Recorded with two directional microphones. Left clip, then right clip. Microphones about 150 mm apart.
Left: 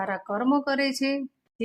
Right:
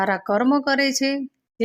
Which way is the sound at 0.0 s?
35° right (ahead or behind).